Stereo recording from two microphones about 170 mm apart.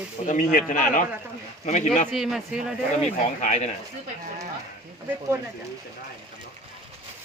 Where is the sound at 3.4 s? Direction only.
40° left (ahead or behind).